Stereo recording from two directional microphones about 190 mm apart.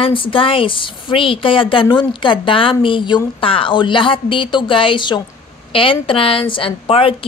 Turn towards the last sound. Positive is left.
turn(degrees=30)  # may be behind; listen again after turning